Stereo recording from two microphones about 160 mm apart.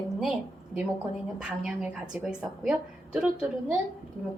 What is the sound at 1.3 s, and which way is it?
A woman's voice, 5° right (ahead or behind).